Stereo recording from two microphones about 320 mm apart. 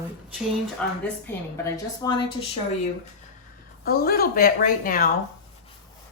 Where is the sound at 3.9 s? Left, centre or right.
Left.